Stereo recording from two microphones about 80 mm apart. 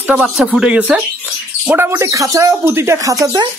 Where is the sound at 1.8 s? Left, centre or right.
Right.